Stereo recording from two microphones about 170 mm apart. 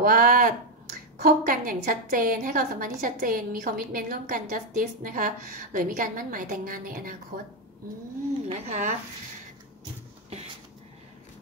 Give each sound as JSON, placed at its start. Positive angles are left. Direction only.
{"t": 0.0, "sound": "a woman's voice", "side_deg": -55}
{"t": 8.5, "sound": "speech", "side_deg": -40}